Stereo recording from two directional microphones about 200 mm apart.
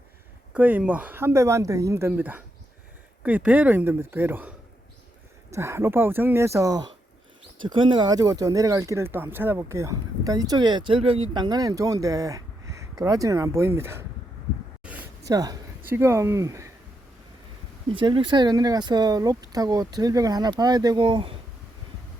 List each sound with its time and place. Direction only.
0.5 s speech: 10° right (ahead or behind)
15.3 s speech: 20° right (ahead or behind)
17.9 s speech: 25° right (ahead or behind)